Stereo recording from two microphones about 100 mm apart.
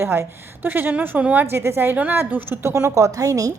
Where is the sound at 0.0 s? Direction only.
25° right (ahead or behind).